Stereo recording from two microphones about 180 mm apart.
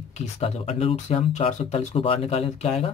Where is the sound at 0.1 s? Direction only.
40° left (ahead or behind).